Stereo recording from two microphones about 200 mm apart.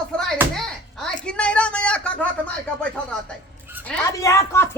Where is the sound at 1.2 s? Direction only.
5° left (ahead or behind).